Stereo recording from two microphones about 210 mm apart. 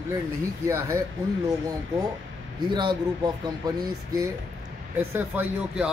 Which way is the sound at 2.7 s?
20° right (ahead or behind).